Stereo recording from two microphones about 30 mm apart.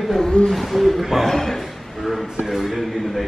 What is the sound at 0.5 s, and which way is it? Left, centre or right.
Speech, centre.